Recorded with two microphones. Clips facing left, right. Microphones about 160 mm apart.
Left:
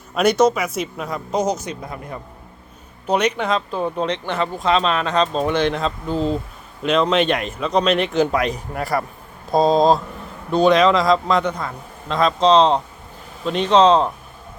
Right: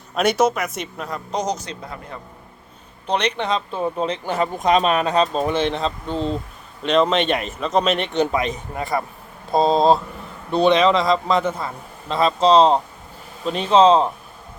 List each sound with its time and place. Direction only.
0.2 s a man's voice: 5° right (ahead or behind)
3.1 s a man's voice: 10° left (ahead or behind)
8.7 s a man's voice: 20° right (ahead or behind)
9.5 s a man's voice: centre (ahead or behind)